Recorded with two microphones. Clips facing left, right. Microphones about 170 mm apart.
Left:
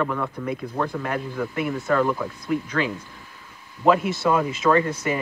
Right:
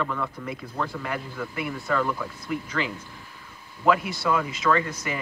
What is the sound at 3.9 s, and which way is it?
Speech, 25° left (ahead or behind).